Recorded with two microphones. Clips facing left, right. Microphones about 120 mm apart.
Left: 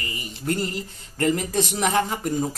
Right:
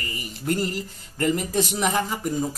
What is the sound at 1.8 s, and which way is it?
Speech, 5° right (ahead or behind).